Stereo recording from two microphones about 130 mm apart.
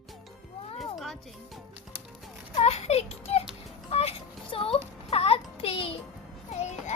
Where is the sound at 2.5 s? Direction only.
55° left (ahead or behind).